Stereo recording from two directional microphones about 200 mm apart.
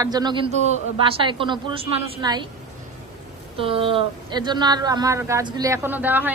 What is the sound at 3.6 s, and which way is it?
A woman's voice, 25° right (ahead or behind).